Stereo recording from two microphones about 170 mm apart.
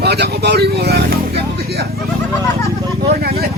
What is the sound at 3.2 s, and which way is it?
Speech, 65° right (ahead or behind).